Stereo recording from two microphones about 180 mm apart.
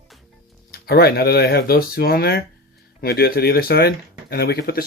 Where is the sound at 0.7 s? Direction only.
65° left (ahead or behind).